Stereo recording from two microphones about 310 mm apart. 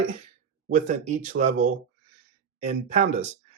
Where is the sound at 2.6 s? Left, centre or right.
Right.